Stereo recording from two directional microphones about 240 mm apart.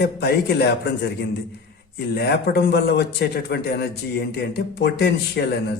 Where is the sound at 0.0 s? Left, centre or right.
Left.